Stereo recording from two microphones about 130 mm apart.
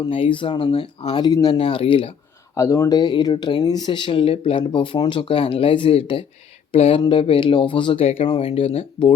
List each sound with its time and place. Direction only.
0.0 s speech: 40° left (ahead or behind)
0.7 s speech: 55° left (ahead or behind)
1.1 s speech: 30° left (ahead or behind)
1.5 s speech: 45° left (ahead or behind)
2.6 s speech: 25° left (ahead or behind); by 9.1 s 45° left (ahead or behind)